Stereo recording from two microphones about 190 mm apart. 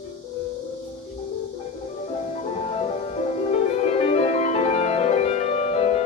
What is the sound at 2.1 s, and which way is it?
Music, 35° left (ahead or behind).